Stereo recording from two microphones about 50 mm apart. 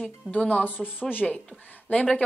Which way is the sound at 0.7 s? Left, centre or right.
Left.